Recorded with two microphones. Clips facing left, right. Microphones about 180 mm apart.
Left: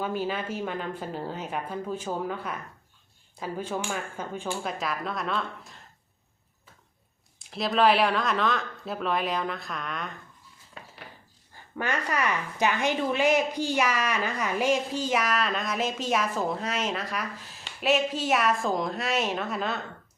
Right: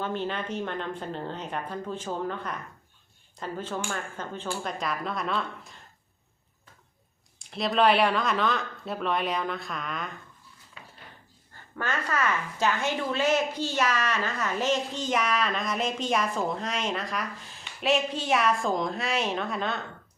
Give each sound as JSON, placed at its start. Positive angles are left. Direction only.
{"t": 0.0, "sound": "a woman's voice", "side_deg": 10}
{"t": 7.3, "sound": "a woman's voice", "side_deg": 0}
{"t": 10.8, "sound": "dishes", "side_deg": 45}
{"t": 11.8, "sound": "a woman's voice", "side_deg": 15}